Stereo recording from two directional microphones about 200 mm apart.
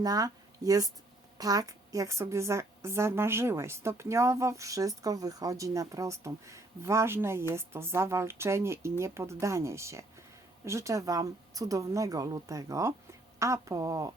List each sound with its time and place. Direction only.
0.0 s a woman's voice: 20° right (ahead or behind)